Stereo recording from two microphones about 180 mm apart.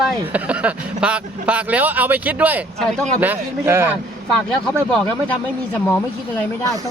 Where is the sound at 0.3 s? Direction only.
5° right (ahead or behind).